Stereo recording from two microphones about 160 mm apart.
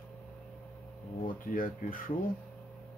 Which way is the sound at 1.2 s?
60° left (ahead or behind).